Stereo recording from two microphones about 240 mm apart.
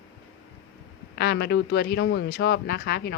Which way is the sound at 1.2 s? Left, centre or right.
Left.